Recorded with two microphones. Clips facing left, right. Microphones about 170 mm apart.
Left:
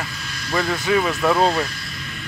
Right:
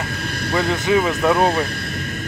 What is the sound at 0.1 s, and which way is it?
Vehicle, 55° right (ahead or behind).